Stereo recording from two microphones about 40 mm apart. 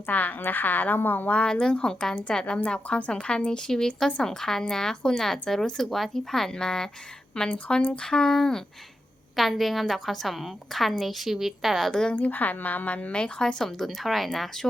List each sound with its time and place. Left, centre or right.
0.0 s a woman's voice: left
1.3 s speech: left
7.4 s speech: left
8.0 s speech: centre
9.3 s a woman's voice: centre
11.9 s speech: centre
12.3 s a woman's voice: left
13.1 s speech: left